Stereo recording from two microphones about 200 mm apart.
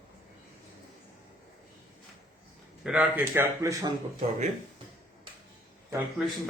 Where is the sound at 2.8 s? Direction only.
5° right (ahead or behind).